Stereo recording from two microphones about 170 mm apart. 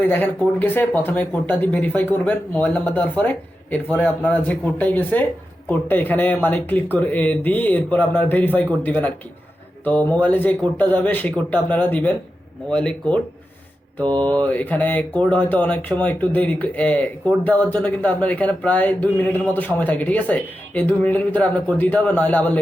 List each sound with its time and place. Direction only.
0.1 s mantra: 10° left (ahead or behind)